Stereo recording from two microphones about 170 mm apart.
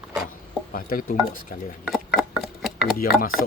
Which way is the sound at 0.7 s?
55° left (ahead or behind).